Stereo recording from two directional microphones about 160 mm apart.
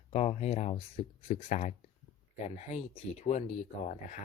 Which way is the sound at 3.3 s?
45° left (ahead or behind).